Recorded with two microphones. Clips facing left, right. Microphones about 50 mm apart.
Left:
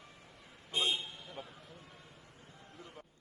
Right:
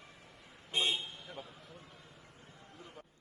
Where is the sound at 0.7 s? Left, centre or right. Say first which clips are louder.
Even; right.